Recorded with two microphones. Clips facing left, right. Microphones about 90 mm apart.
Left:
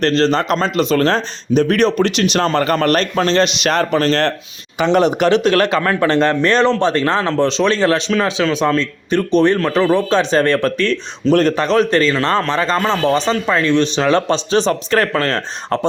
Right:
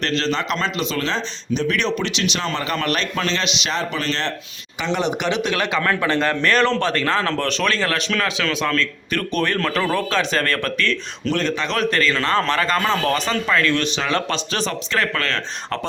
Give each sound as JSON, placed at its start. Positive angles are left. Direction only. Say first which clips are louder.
{"t": 0.0, "sound": "speech", "louder": "left 7 dB", "side_deg": 40}
{"t": 3.7, "sound": "speech", "louder": "left 8 dB", "side_deg": 55}
{"t": 4.0, "sound": "a man's voice", "louder": "left 9 dB", "side_deg": 45}
{"t": 14.8, "sound": "speech", "louder": "left 6 dB", "side_deg": 40}